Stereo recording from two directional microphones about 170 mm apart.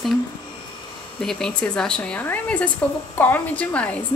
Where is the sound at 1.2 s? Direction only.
5° left (ahead or behind).